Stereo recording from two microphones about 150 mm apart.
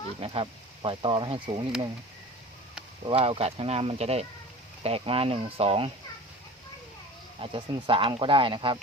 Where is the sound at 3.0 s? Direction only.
40° right (ahead or behind).